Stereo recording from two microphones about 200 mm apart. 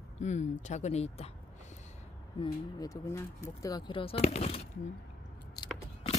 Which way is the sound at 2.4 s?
15° left (ahead or behind).